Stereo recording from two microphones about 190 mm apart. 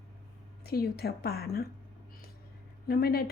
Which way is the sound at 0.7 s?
55° left (ahead or behind).